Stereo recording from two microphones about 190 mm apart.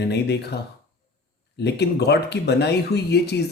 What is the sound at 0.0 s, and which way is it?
Speech, 60° left (ahead or behind).